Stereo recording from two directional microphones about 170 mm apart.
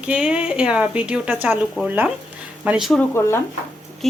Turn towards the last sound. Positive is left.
turn(degrees=15)  # may be behind; listen again after turning